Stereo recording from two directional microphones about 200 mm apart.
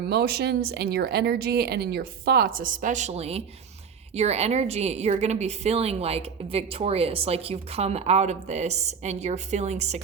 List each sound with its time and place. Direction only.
0.1 s a woman's voice: 55° right (ahead or behind); by 10.0 s 35° right (ahead or behind)